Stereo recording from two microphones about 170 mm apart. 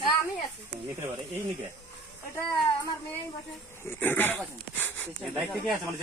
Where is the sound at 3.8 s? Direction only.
10° left (ahead or behind).